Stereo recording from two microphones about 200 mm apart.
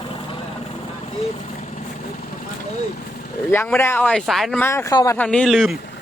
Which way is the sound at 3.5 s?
10° left (ahead or behind).